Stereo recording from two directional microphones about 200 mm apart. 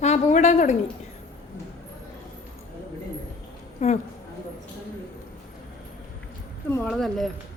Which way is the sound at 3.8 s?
35° left (ahead or behind).